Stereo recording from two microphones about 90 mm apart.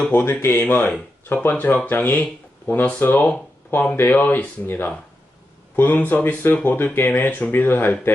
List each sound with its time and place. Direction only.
0.1 s speech: 25° left (ahead or behind)